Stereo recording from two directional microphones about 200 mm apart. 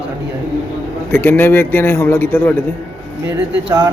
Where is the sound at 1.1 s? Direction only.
10° left (ahead or behind).